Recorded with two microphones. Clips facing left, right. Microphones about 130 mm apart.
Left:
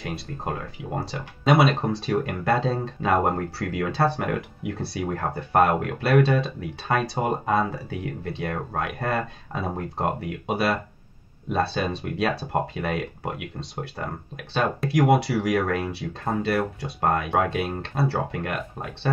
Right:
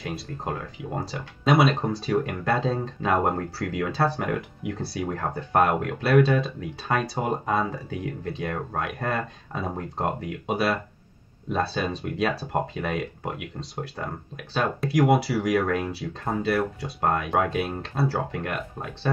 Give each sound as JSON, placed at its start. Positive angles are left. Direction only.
{"t": 0.0, "sound": "speech", "side_deg": 0}